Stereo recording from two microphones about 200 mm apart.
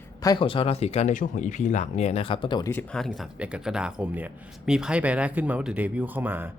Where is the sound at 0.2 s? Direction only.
20° left (ahead or behind).